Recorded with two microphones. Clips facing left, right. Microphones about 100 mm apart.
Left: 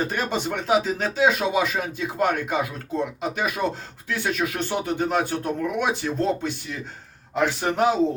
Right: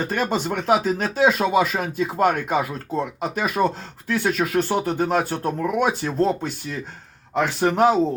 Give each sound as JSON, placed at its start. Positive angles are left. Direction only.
{"t": 0.1, "sound": "speech", "side_deg": -45}